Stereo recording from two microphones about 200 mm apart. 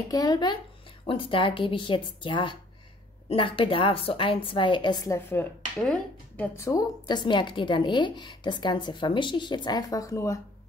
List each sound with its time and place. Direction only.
0.1 s a woman's voice: 20° left (ahead or behind)